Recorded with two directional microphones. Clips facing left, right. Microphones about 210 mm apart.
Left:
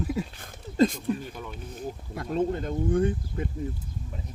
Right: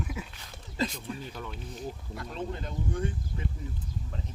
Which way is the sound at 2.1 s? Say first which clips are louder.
Left 12 dB; 50° left (ahead or behind).